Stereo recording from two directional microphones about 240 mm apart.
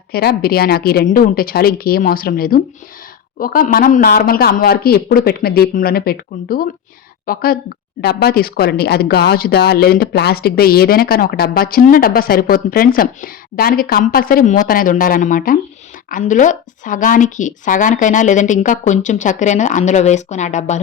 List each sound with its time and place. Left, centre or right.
0.1 s speech: left